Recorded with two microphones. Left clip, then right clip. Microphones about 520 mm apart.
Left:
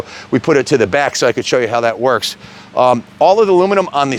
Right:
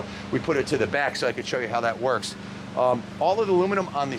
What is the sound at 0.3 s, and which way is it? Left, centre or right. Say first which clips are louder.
Speech: left 12 dB; left.